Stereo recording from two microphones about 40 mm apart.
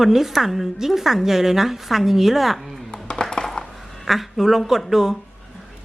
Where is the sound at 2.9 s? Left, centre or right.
Centre.